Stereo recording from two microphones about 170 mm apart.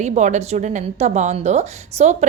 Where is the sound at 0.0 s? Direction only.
45° right (ahead or behind).